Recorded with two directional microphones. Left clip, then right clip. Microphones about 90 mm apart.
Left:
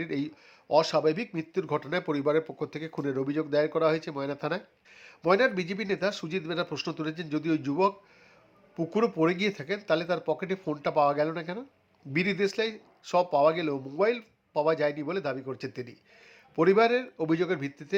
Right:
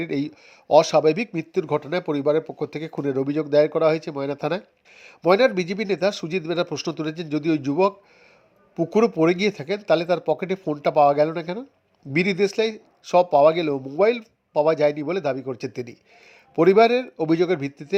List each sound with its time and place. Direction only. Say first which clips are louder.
0.0 s speech: right 6 dB; 40° right (ahead or behind); by 2.6 s 25° right (ahead or behind)
2.6 s a man's voice: right 6 dB; 40° right (ahead or behind)